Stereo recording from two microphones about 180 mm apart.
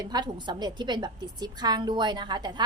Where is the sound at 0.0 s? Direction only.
25° right (ahead or behind).